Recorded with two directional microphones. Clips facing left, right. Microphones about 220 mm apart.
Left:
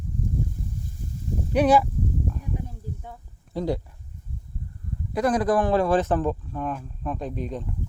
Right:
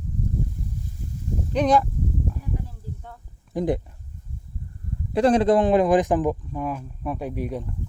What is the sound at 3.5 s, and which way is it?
Speech, 20° right (ahead or behind).